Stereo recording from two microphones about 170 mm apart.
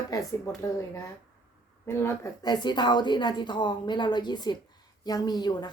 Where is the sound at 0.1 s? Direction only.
20° left (ahead or behind).